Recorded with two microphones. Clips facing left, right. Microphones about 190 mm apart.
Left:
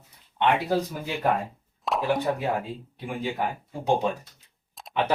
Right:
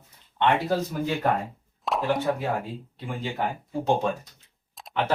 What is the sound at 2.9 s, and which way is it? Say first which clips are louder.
Speech: left 2 dB; 15° left (ahead or behind).